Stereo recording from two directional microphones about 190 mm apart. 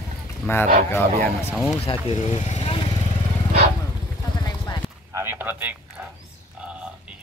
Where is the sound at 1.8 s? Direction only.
30° left (ahead or behind).